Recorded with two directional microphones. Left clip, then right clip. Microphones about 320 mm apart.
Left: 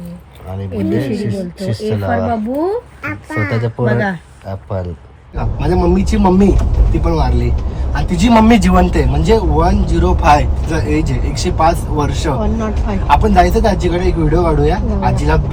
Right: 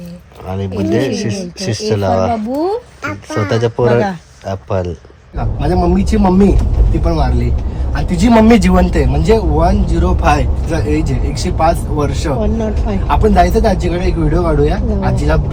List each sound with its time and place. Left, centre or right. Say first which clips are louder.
0.5 s speech: right 3 dB; right
3.5 s speech: right 7 dB; right
5.4 s speech: even; centre